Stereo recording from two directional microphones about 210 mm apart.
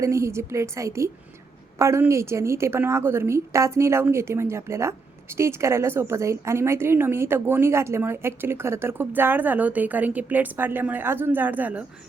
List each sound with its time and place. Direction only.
0.0 s a woman's voice: 15° right (ahead or behind)